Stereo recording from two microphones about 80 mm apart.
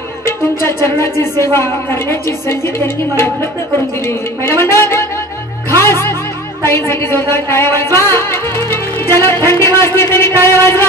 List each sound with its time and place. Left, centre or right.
0.8 s a woman's voice: left
4.0 s a woman's voice: left
5.8 s music: left
6.6 s a woman's voice: left